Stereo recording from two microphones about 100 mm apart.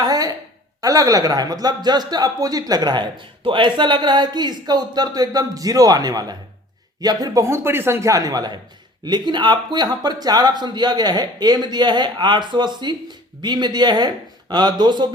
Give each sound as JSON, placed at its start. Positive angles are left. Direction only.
{"t": 0.0, "sound": "a sound", "side_deg": -40}
{"t": 0.8, "sound": "speech", "side_deg": -35}
{"t": 7.4, "sound": "speech", "side_deg": -25}